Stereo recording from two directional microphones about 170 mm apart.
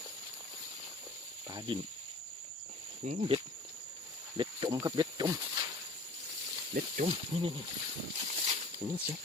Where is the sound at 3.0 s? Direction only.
40° right (ahead or behind).